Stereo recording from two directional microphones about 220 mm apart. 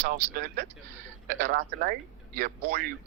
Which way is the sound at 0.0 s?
40° right (ahead or behind).